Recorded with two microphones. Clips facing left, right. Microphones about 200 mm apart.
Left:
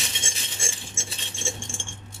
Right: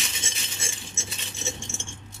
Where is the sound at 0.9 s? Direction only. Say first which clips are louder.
Left 1 dB; 30° left (ahead or behind).